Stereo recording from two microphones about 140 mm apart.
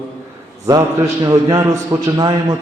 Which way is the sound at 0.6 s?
25° right (ahead or behind).